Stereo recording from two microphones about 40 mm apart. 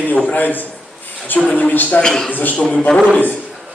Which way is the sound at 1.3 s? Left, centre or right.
Left.